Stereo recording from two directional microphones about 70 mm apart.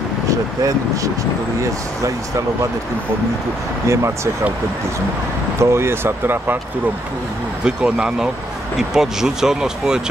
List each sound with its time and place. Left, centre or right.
0.3 s speech: right
3.8 s speech: right
5.6 s speech: right
7.6 s speech: centre